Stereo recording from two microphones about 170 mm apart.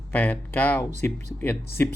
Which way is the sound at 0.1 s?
10° left (ahead or behind).